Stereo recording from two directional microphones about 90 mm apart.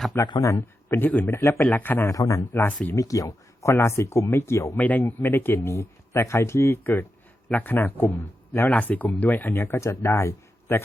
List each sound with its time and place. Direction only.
0.3 s a man's voice: 35° left (ahead or behind)
0.9 s speech: 20° left (ahead or behind)
2.0 s speech: 35° left (ahead or behind)
2.5 s speech: 25° left (ahead or behind)
2.9 s speech: 40° left (ahead or behind)
4.8 s speech: 20° left (ahead or behind)